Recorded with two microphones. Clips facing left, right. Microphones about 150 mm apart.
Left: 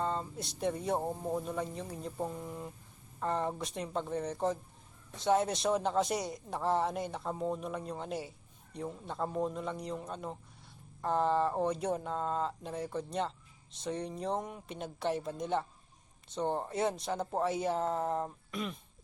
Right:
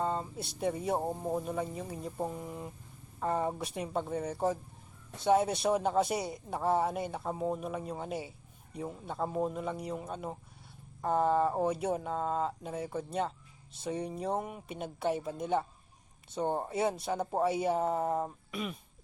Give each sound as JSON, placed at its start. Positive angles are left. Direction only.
{"t": 0.0, "sound": "speech", "side_deg": -10}